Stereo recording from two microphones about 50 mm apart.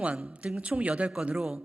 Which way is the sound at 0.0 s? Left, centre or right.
Right.